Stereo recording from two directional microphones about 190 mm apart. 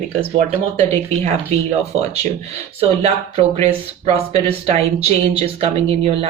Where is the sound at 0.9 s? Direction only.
35° right (ahead or behind).